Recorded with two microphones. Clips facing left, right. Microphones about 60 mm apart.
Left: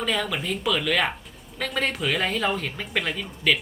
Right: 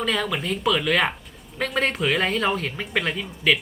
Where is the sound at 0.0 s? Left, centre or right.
Centre.